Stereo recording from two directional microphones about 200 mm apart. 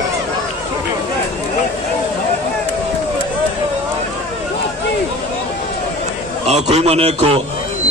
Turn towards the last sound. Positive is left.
turn(degrees=-30)  # may be behind; listen again after turning